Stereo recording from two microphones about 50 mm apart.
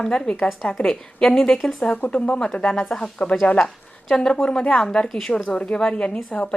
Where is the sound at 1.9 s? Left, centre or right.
Left.